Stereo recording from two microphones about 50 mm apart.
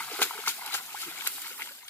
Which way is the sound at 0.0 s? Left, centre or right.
Left.